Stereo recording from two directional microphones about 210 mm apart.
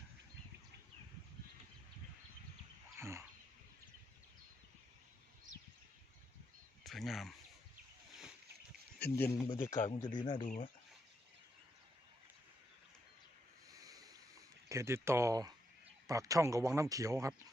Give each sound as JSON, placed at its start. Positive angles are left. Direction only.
{"t": 3.0, "sound": "a sound", "side_deg": -15}
{"t": 6.8, "sound": "speech", "side_deg": 0}
{"t": 9.0, "sound": "speech", "side_deg": 10}
{"t": 9.7, "sound": "speech", "side_deg": 35}
{"t": 10.2, "sound": "speech", "side_deg": 20}
{"t": 10.4, "sound": "speech", "side_deg": 40}
{"t": 13.7, "sound": "a sound", "side_deg": -15}
{"t": 14.7, "sound": "speech", "side_deg": -15}